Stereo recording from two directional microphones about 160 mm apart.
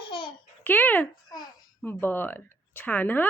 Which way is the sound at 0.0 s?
30° left (ahead or behind).